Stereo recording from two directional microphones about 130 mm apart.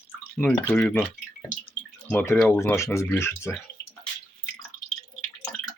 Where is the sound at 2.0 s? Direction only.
20° left (ahead or behind).